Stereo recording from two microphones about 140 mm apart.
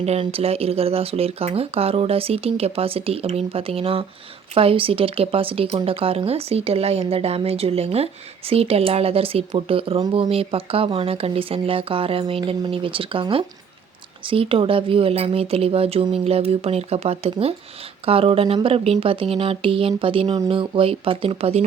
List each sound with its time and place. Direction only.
0.0 s speech: 45° right (ahead or behind)